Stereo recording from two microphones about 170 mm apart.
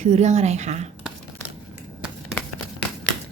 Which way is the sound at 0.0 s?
40° right (ahead or behind).